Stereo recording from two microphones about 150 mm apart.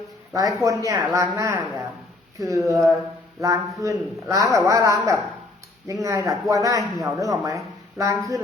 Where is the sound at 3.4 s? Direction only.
20° right (ahead or behind).